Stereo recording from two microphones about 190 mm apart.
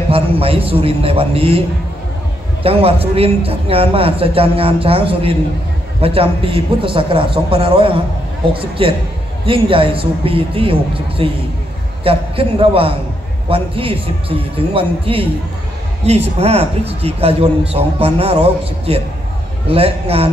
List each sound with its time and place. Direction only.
0.1 s a man's voice: 30° right (ahead or behind)
2.6 s a man's voice: 30° right (ahead or behind)